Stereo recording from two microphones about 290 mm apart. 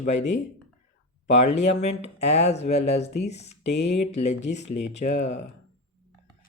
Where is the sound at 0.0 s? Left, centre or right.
Left.